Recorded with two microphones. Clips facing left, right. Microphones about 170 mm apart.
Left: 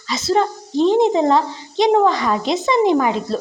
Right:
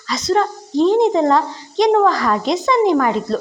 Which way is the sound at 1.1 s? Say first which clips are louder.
Right 1 dB; 25° left (ahead or behind).